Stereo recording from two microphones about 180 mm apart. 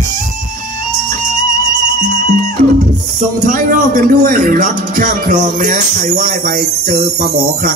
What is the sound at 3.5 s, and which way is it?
A man's voice, 50° right (ahead or behind).